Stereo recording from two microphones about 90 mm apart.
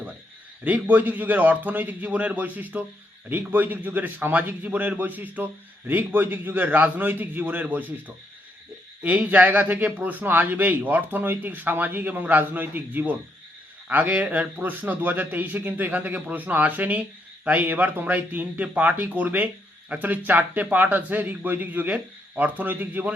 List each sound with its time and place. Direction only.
0.6 s a man's voice: 20° right (ahead or behind)